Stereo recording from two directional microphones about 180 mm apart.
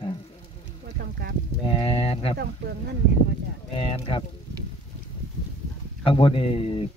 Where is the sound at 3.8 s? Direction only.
30° left (ahead or behind).